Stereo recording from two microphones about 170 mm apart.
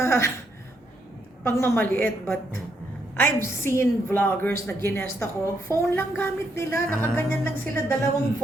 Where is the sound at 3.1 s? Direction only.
15° left (ahead or behind).